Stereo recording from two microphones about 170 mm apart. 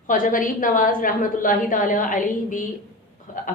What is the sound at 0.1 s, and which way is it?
Speech, 50° left (ahead or behind).